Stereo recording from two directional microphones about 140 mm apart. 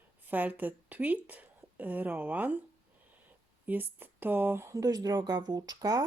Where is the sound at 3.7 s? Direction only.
15° right (ahead or behind).